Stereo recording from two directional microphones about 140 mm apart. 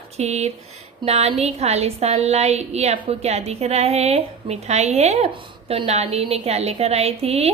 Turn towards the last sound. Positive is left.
turn(degrees=-45)  # may be behind; listen again after turning